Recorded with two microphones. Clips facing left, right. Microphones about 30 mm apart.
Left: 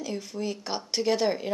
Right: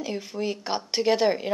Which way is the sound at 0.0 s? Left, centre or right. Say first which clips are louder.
Right 3 dB; centre.